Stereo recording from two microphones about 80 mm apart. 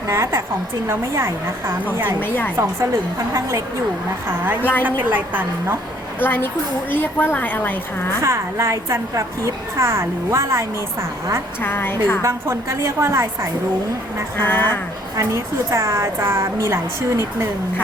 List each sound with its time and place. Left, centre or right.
0.1 s a woman's voice: right
2.2 s a woman's voice: left
4.8 s a woman's voice: right
6.1 s a woman's voice: left
8.2 s a woman's voice: right
11.6 s a woman's voice: left
12.2 s a woman's voice: right
14.4 s a woman's voice: left
15.1 s a woman's voice: right